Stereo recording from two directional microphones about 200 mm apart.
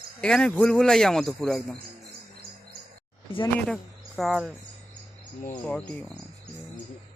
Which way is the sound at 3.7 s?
Centre (ahead or behind).